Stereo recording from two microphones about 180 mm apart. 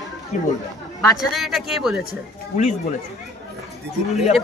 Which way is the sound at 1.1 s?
Centre (ahead or behind).